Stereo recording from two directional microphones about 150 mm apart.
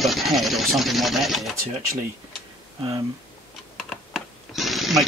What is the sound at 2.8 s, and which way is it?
Speech, 35° right (ahead or behind).